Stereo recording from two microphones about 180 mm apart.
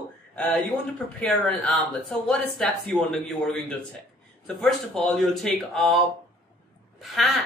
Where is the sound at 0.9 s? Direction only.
10° left (ahead or behind).